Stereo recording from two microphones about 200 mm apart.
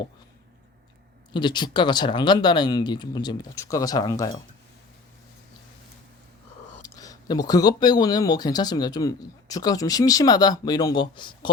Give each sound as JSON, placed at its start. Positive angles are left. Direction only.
{"t": 1.3, "sound": "speech", "side_deg": 25}
{"t": 6.8, "sound": "speech", "side_deg": 15}